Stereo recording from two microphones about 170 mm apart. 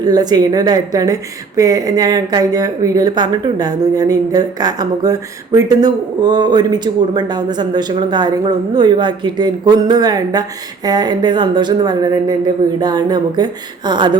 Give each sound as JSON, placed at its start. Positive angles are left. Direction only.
{"t": 0.0, "sound": "a woman's voice", "side_deg": -25}